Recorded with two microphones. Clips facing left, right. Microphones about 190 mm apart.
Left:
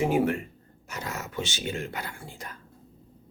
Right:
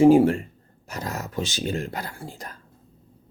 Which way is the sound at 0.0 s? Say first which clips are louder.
Right 9 dB; 30° right (ahead or behind).